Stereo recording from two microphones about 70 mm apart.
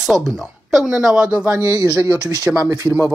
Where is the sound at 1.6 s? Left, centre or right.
Right.